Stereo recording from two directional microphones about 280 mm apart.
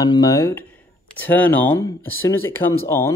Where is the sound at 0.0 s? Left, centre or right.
Centre.